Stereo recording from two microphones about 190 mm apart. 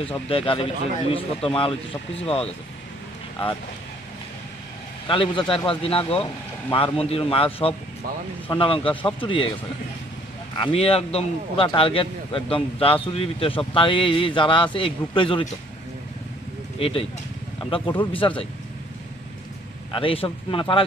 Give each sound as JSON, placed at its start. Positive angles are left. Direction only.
{"t": 0.3, "sound": "speech", "side_deg": 30}
{"t": 5.0, "sound": "speech", "side_deg": 25}
{"t": 10.6, "sound": "speech", "side_deg": 30}
{"t": 16.7, "sound": "speech", "side_deg": 30}
{"t": 19.9, "sound": "speech", "side_deg": 30}